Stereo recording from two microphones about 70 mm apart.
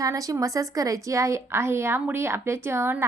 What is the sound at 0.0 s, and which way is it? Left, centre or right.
A woman's voice, right.